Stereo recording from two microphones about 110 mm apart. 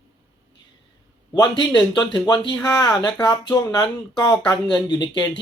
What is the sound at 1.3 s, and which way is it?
Speech, 40° left (ahead or behind).